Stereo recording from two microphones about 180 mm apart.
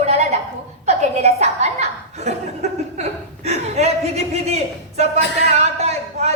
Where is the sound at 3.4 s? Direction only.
35° right (ahead or behind).